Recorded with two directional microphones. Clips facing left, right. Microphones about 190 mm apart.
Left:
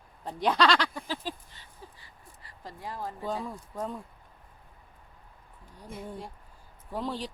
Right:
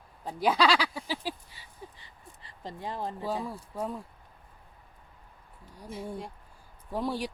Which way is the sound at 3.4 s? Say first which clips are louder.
Right 1 dB; 5° right (ahead or behind).